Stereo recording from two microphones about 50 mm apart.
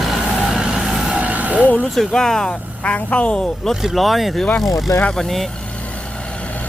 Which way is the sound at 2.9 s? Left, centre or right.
Left.